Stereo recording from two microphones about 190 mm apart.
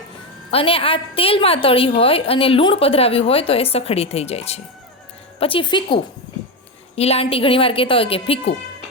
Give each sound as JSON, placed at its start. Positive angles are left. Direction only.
{"t": 0.5, "sound": "a woman's voice", "side_deg": 30}